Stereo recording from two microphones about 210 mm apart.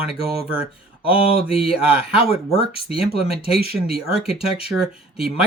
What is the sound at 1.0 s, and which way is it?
Speech, 25° left (ahead or behind).